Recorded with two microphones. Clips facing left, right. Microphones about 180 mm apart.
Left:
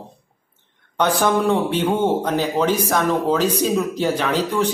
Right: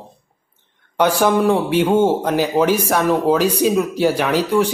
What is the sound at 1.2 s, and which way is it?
Speech, 10° right (ahead or behind).